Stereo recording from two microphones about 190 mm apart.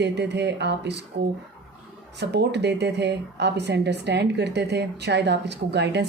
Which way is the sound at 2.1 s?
65° right (ahead or behind).